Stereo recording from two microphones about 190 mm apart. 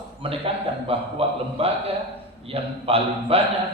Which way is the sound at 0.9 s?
30° right (ahead or behind).